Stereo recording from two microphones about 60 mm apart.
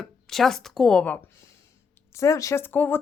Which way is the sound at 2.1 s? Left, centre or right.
Left.